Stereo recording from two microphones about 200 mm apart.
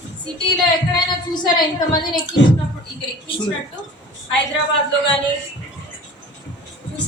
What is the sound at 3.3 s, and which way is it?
Speech, 25° left (ahead or behind).